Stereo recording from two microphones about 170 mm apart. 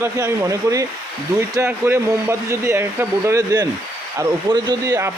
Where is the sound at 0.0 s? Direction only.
15° right (ahead or behind).